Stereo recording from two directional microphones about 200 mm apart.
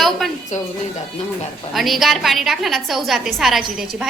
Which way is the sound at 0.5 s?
35° left (ahead or behind).